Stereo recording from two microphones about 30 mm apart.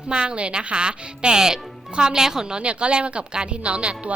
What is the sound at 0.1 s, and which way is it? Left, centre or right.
Speech, right.